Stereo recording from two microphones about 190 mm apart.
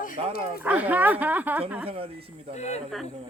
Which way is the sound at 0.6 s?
10° right (ahead or behind).